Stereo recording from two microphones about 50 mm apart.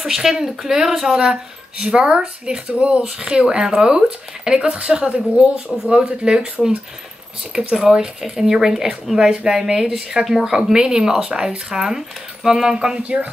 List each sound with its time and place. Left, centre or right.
0.0 s speech: centre
7.5 s speech: centre